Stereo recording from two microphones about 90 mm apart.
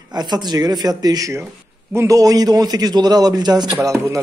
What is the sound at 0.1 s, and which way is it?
A man's voice, 50° right (ahead or behind).